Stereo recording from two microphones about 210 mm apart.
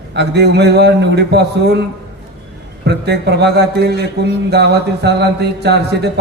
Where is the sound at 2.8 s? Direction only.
55° right (ahead or behind).